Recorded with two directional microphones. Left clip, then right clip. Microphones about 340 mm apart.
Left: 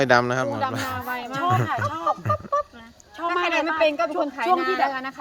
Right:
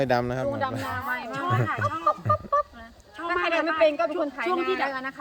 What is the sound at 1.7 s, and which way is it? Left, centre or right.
Music, left.